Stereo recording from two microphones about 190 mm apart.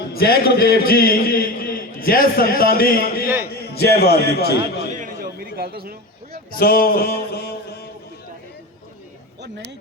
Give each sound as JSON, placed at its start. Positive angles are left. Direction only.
{"t": 0.1, "sound": "a man's voice", "side_deg": 55}
{"t": 4.9, "sound": "a sound", "side_deg": -45}
{"t": 6.6, "sound": "a man's voice", "side_deg": 50}